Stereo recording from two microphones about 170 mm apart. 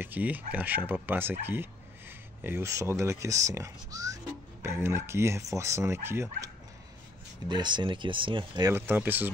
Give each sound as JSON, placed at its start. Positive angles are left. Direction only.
{"t": 0.0, "sound": "speech", "side_deg": -10}
{"t": 7.4, "sound": "speech", "side_deg": -25}
{"t": 8.7, "sound": "speech", "side_deg": -10}